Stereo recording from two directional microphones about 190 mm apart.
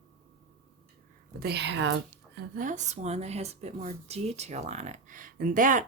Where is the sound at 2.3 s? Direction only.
45° right (ahead or behind).